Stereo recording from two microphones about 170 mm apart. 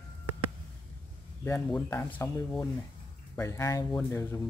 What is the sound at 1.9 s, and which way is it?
Speech, 15° left (ahead or behind).